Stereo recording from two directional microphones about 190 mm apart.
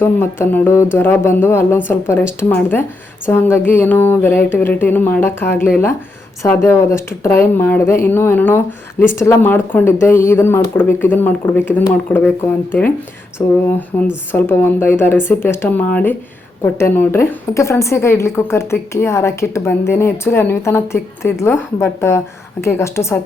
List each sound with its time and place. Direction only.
0.0 s speech: 10° left (ahead or behind)
13.4 s speech: 15° left (ahead or behind)